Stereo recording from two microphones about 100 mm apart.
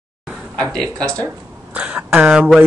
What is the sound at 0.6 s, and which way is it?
Speech, 5° left (ahead or behind).